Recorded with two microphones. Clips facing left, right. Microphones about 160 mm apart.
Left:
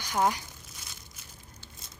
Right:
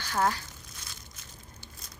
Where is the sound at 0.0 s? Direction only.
15° left (ahead or behind).